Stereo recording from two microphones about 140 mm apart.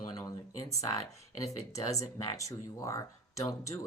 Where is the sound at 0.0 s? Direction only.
30° left (ahead or behind).